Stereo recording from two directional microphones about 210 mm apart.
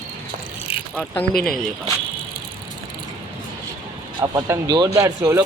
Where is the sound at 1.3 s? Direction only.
45° left (ahead or behind).